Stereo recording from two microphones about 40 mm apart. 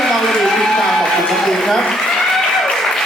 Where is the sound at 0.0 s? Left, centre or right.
Centre.